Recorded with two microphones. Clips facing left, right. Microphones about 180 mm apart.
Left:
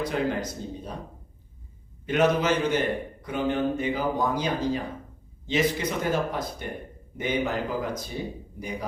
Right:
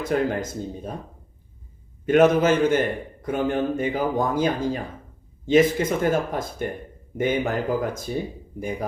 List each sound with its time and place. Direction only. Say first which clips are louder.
0.0 s a man's voice: right 3 dB; 50° right (ahead or behind)
2.0 s a man's voice: right 6 dB; 50° right (ahead or behind)